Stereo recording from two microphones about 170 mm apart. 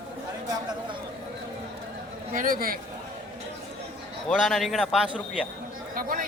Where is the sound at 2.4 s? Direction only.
55° right (ahead or behind).